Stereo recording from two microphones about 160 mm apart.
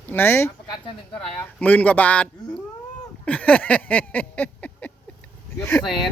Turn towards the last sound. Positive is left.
turn(degrees=15)  # may be behind; listen again after turning